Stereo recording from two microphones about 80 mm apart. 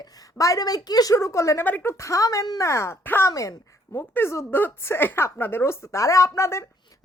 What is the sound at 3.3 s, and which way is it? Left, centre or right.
Speech, left.